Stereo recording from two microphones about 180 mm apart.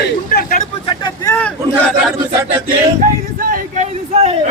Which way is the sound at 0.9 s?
25° left (ahead or behind).